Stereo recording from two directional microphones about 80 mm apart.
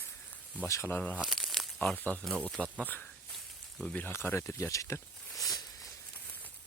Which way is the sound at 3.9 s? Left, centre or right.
Left.